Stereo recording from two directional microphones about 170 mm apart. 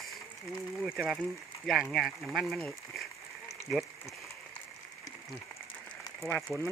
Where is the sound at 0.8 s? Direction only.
5° right (ahead or behind).